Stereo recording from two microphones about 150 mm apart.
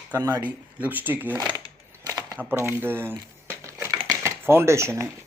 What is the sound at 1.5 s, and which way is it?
Coin, 25° right (ahead or behind).